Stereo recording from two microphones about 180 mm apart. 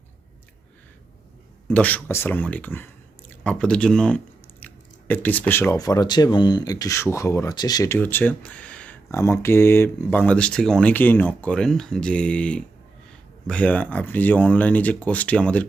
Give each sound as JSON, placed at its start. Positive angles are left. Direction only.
{"t": 1.6, "sound": "speech", "side_deg": 10}
{"t": 7.9, "sound": "speech", "side_deg": 10}